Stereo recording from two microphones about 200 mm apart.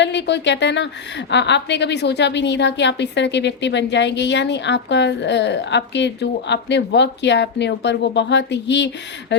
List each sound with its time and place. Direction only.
0.0 s a woman's voice: 60° left (ahead or behind)